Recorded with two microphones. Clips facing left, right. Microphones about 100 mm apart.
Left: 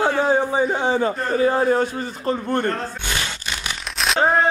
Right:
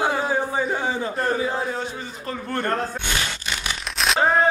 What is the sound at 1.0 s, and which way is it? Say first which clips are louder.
Speech: left 4 dB; 55° left (ahead or behind).